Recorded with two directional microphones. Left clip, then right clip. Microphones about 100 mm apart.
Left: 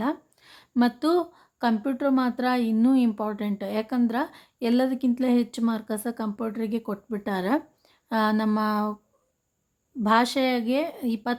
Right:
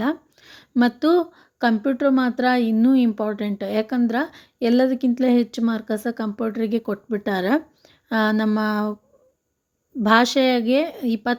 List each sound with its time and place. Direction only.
0.0 s a sound: 25° right (ahead or behind)
0.8 s speech: 20° right (ahead or behind)
10.0 s speech: 30° right (ahead or behind)